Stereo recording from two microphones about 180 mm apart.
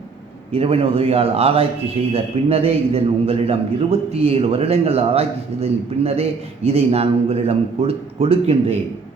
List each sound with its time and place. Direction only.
0.5 s a man's voice: 35° right (ahead or behind)